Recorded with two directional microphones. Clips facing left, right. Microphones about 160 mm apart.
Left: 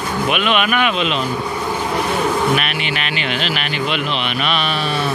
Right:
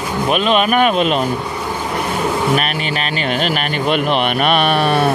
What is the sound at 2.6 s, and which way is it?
Speech, 40° right (ahead or behind).